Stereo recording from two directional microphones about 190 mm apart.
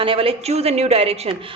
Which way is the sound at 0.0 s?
30° right (ahead or behind).